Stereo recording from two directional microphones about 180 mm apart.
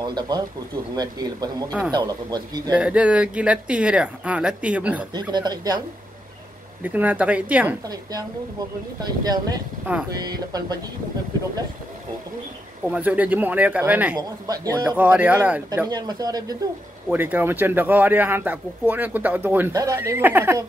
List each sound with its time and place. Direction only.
0.0 s speech: 25° right (ahead or behind)
2.8 s a man's voice: 5° right (ahead or behind)
5.1 s speech: 25° right (ahead or behind)
6.8 s a man's voice: 10° right (ahead or behind)
7.9 s speech: 20° right (ahead or behind)
12.8 s a man's voice: 10° right (ahead or behind)
14.1 s a man's voice: 20° right (ahead or behind)
15.9 s speech: 20° right (ahead or behind)
17.1 s a man's voice: 10° right (ahead or behind)